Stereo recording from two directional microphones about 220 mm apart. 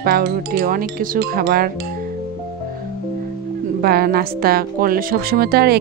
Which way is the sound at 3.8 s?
45° right (ahead or behind).